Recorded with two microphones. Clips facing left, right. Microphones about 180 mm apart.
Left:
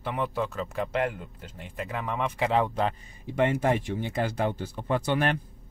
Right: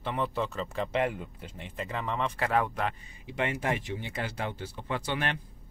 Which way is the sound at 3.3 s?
50° left (ahead or behind).